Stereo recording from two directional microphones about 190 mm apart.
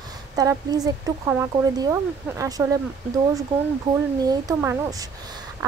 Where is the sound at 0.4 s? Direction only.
20° right (ahead or behind).